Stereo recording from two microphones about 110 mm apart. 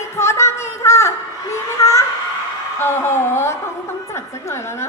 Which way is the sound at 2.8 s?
25° left (ahead or behind).